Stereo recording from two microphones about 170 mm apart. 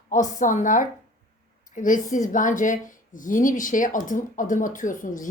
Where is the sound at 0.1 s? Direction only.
50° left (ahead or behind).